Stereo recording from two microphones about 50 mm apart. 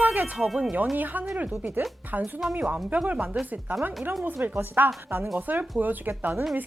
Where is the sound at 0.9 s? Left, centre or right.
Right.